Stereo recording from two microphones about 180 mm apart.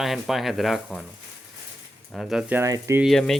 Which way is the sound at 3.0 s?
Centre (ahead or behind).